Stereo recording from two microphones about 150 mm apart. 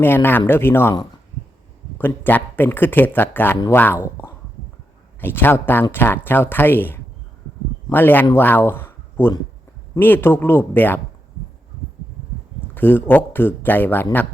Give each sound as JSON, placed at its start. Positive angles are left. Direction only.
{"t": 0.0, "sound": "speech", "side_deg": 15}
{"t": 2.0, "sound": "a man's voice", "side_deg": 15}
{"t": 12.7, "sound": "speech", "side_deg": 15}